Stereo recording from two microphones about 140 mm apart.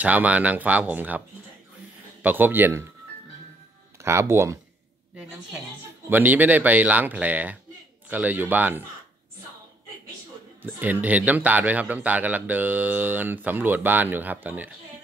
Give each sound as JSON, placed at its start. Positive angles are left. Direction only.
{"t": 0.0, "sound": "speech", "side_deg": -10}
{"t": 2.2, "sound": "speech", "side_deg": -15}
{"t": 4.0, "sound": "speech", "side_deg": -20}
{"t": 6.0, "sound": "speech", "side_deg": -15}
{"t": 10.6, "sound": "speech", "side_deg": -10}